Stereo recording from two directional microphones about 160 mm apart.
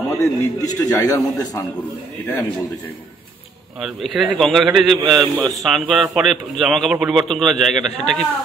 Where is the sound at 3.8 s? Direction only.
Centre (ahead or behind).